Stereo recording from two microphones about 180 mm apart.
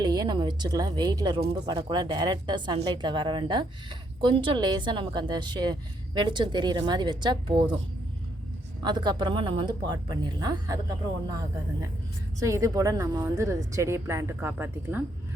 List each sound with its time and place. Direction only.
0.0 s a woman's voice: 20° right (ahead or behind)
8.8 s a woman's voice: 25° right (ahead or behind)
12.4 s a woman's voice: 15° right (ahead or behind)